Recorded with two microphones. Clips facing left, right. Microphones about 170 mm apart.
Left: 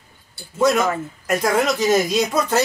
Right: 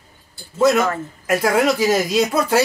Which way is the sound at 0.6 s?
5° right (ahead or behind).